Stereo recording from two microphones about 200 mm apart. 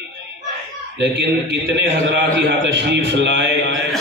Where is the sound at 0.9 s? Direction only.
60° right (ahead or behind).